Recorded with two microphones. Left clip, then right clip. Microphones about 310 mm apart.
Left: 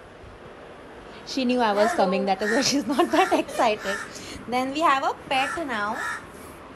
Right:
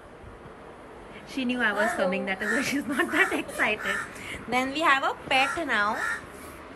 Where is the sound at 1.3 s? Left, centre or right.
Centre.